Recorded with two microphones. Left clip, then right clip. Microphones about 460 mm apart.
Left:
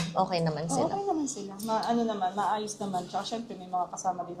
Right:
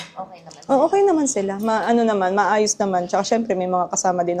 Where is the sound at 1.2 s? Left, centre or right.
Right.